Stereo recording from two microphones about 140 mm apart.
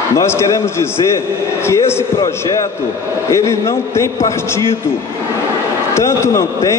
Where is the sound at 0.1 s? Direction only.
20° left (ahead or behind).